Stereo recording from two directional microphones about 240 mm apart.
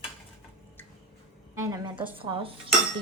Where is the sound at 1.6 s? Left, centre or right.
Centre.